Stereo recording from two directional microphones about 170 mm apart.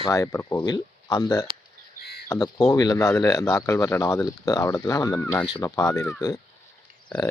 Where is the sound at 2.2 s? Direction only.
20° left (ahead or behind).